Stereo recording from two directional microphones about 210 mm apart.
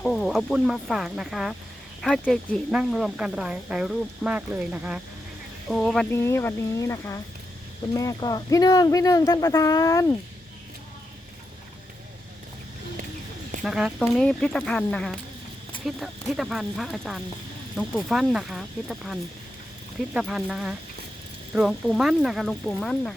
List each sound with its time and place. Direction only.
0.0 s speech: 5° left (ahead or behind)
13.6 s speech: centre (ahead or behind)